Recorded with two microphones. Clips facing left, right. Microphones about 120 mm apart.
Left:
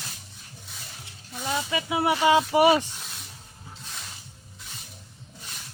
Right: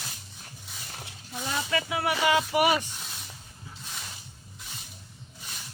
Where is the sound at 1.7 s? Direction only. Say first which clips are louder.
Left 3 dB; 20° left (ahead or behind).